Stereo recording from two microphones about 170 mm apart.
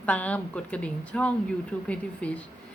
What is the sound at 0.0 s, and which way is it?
A woman's voice, 10° left (ahead or behind).